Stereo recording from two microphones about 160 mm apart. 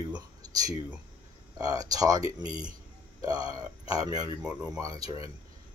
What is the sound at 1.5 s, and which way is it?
Speech, 20° right (ahead or behind).